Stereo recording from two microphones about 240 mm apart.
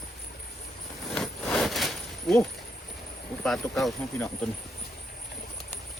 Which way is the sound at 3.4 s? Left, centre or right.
Centre.